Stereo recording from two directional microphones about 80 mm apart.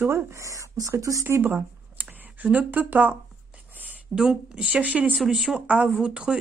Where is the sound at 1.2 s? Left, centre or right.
Right.